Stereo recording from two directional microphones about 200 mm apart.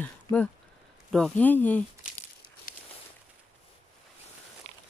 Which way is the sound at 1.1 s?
5° left (ahead or behind).